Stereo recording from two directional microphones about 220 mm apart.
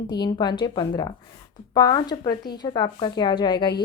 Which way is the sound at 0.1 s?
20° left (ahead or behind).